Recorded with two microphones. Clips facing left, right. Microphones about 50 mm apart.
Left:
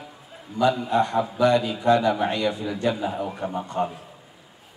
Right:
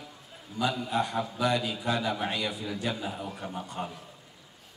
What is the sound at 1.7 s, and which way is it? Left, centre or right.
A man's voice, left.